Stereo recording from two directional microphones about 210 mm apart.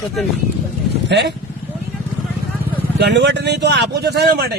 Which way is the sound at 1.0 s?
55° right (ahead or behind).